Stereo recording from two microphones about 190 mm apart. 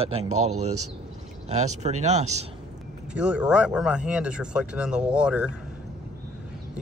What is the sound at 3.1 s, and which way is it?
Speech, 5° right (ahead or behind).